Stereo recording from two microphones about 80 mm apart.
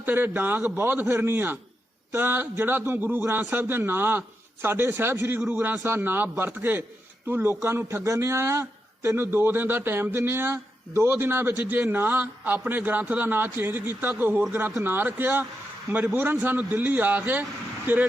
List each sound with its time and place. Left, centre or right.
0.0 s a man's voice: right